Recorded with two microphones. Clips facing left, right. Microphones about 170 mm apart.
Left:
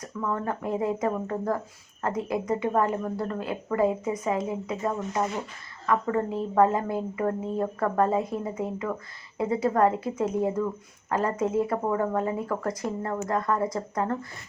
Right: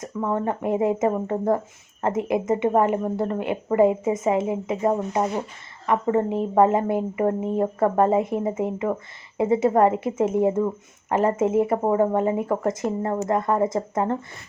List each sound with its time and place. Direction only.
0.0 s speech: 25° right (ahead or behind)